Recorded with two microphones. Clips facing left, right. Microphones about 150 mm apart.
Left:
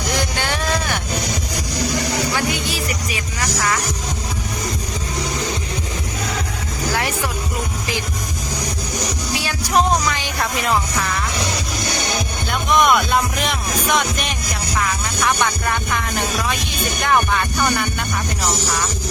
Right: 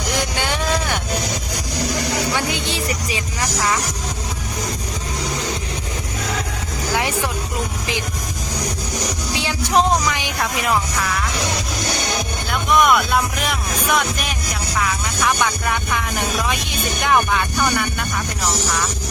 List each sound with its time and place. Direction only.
0.4 s music: 15° right (ahead or behind)
2.5 s music: 25° right (ahead or behind)
9.4 s music: 20° right (ahead or behind)
12.5 s music: centre (ahead or behind)